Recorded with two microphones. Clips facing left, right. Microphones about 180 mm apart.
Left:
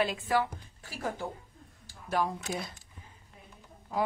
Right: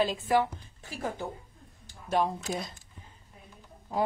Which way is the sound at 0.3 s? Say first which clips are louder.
Right 3 dB; 20° right (ahead or behind).